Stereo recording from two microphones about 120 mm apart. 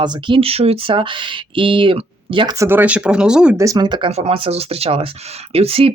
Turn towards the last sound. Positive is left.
turn(degrees=-55)  # may be behind; listen again after turning